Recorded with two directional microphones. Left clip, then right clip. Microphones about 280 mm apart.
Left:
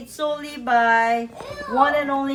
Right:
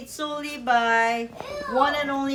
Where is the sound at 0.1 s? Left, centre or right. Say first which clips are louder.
Left 5 dB; centre.